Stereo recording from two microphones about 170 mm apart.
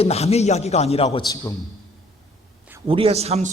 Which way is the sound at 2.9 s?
35° right (ahead or behind).